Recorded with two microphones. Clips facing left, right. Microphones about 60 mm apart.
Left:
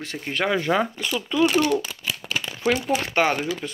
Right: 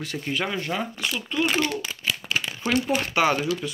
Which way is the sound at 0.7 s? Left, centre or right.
Left.